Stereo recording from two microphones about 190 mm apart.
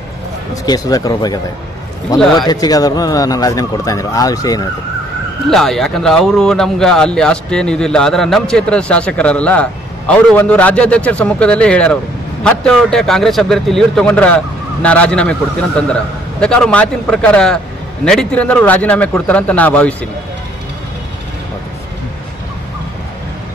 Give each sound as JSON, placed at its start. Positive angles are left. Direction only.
{"t": 0.7, "sound": "speech", "side_deg": 20}
{"t": 5.5, "sound": "a man's voice", "side_deg": 0}